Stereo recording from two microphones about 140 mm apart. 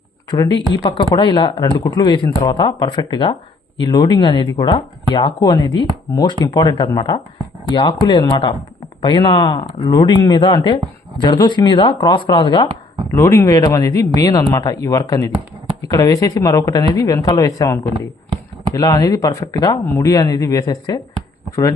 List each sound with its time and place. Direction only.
0.3 s speech: 30° left (ahead or behind)
13.1 s speech: 20° left (ahead or behind)